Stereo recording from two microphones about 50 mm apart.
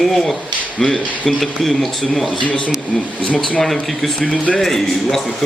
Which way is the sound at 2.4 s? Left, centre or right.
Left.